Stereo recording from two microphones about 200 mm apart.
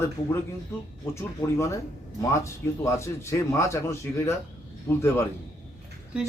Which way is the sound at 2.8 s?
15° left (ahead or behind).